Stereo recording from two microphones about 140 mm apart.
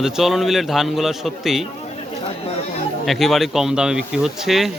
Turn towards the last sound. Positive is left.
turn(degrees=0)  # may be behind; listen again after turning